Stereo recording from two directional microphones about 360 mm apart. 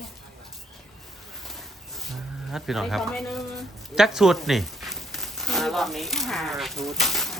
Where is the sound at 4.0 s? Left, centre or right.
Centre.